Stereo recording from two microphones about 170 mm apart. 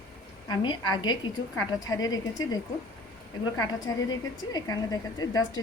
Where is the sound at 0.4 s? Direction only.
25° left (ahead or behind).